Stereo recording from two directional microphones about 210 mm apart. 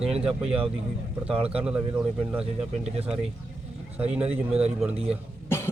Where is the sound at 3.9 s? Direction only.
5° right (ahead or behind).